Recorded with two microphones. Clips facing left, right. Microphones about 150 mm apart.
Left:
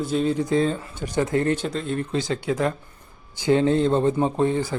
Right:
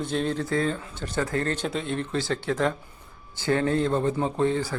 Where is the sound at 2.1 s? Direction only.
15° left (ahead or behind).